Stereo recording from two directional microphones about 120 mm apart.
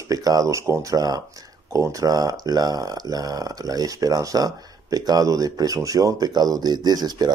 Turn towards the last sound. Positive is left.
turn(degrees=-35)  # may be behind; listen again after turning